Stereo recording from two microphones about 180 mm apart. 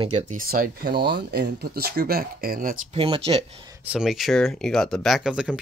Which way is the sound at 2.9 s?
30° right (ahead or behind).